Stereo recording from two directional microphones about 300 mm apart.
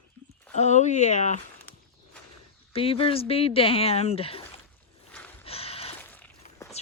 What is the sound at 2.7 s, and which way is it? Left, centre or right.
Speech, centre.